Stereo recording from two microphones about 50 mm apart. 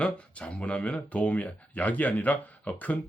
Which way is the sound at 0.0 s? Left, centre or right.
Left.